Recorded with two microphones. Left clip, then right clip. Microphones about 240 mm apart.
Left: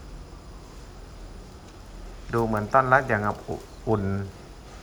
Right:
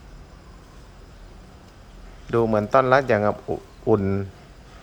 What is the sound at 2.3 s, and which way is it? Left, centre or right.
Speech, right.